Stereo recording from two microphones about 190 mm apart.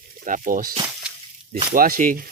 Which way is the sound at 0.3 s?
45° right (ahead or behind).